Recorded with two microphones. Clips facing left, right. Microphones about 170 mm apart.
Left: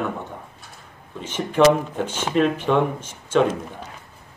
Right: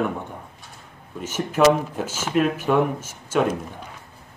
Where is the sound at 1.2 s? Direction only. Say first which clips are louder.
Left 1 dB; 5° right (ahead or behind).